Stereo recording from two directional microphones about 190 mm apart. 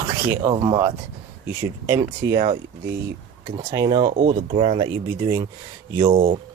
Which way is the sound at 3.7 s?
20° right (ahead or behind).